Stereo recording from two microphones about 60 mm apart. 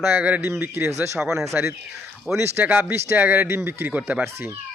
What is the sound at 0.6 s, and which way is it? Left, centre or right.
Speech, right.